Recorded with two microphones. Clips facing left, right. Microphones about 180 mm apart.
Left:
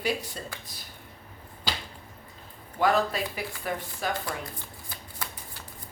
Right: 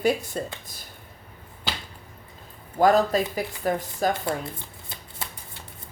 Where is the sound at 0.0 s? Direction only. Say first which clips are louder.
Right 7 dB; 50° right (ahead or behind).